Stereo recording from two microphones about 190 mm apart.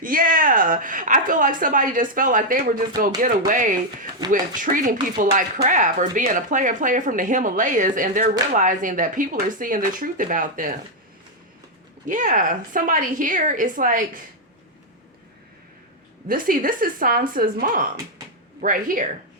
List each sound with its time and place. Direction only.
0.0 s speech: 45° right (ahead or behind)
4.2 s speech: 20° right (ahead or behind)
4.6 s speech: 45° right (ahead or behind)
12.0 s speech: 45° right (ahead or behind)
16.3 s speech: 45° right (ahead or behind)